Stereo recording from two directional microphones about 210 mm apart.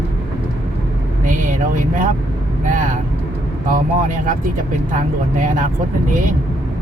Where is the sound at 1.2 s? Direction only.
40° right (ahead or behind).